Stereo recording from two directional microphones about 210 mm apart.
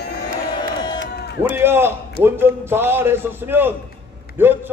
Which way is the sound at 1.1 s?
50° left (ahead or behind).